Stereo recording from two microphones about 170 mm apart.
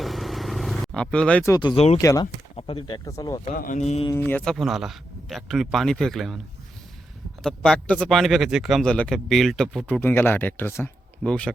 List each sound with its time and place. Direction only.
0.0 s vehicle: centre (ahead or behind)
1.5 s speech: 25° left (ahead or behind)
2.2 s speech: 35° left (ahead or behind)
3.5 s speech: 55° left (ahead or behind)
4.1 s a man's voice: 10° left (ahead or behind)
7.4 s a man's voice: 5° left (ahead or behind)